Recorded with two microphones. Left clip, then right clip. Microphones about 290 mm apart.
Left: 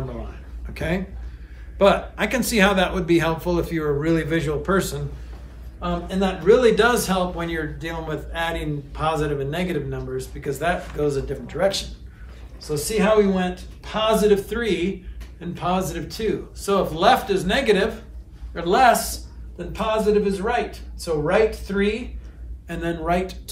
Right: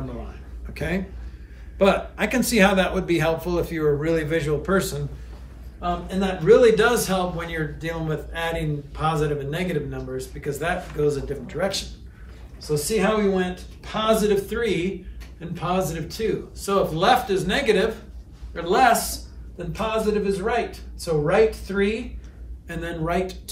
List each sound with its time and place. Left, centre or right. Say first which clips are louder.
0.7 s a man's voice: left 2 dB; centre